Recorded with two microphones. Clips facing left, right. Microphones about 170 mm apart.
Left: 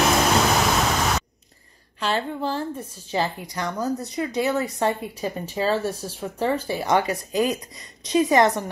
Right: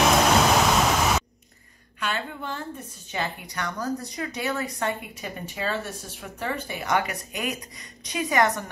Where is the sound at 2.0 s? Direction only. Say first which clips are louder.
Left 6 dB; 30° left (ahead or behind).